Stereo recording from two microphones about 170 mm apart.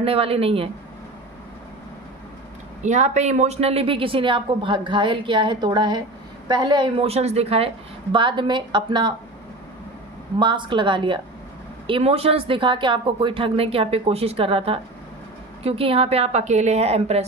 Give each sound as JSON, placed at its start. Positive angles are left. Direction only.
{"t": 0.0, "sound": "speech", "side_deg": -35}
{"t": 2.8, "sound": "a woman's voice", "side_deg": -45}
{"t": 10.4, "sound": "a woman's voice", "side_deg": -30}